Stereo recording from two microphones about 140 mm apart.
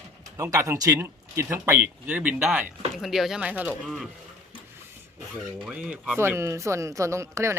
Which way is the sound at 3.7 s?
5° left (ahead or behind).